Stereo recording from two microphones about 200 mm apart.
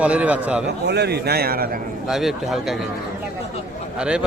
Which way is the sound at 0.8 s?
55° right (ahead or behind).